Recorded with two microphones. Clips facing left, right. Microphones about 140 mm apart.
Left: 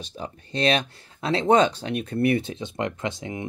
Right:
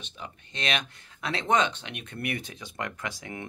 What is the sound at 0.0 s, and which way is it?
Speech, 35° left (ahead or behind).